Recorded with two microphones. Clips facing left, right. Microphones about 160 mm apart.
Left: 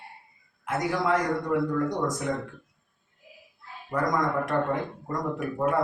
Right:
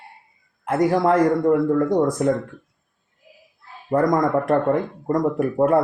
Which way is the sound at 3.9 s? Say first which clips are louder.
Right 8 dB; 50° right (ahead or behind).